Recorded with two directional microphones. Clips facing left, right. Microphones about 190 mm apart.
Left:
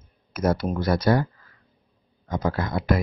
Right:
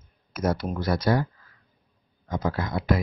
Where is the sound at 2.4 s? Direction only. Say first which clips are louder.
Left 2 dB; 55° left (ahead or behind).